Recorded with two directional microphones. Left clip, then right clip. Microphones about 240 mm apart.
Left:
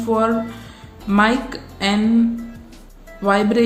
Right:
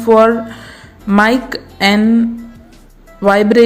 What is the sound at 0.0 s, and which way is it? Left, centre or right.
A woman's voice, right.